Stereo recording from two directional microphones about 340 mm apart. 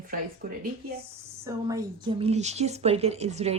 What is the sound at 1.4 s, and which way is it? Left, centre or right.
A woman's voice, centre.